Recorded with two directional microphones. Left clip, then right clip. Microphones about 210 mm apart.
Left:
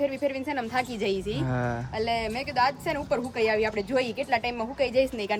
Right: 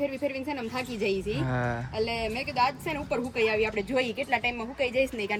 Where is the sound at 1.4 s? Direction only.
15° left (ahead or behind).